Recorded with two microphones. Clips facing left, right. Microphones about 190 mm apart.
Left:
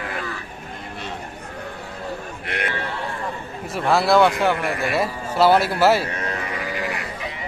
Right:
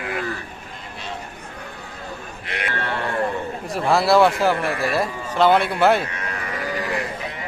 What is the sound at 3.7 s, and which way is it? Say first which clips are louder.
A man's voice: even; centre (ahead or behind).